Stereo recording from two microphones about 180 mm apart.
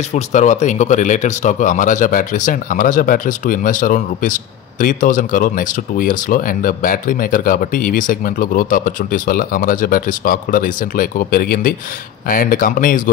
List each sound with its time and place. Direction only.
0.1 s speech: 40° left (ahead or behind)